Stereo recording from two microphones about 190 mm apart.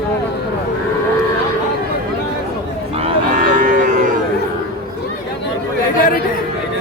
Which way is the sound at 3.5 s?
45° right (ahead or behind).